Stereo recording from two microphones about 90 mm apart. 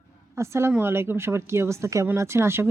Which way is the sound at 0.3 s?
30° right (ahead or behind).